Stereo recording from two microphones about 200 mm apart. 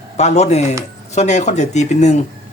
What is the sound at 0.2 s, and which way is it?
Speech, 35° left (ahead or behind).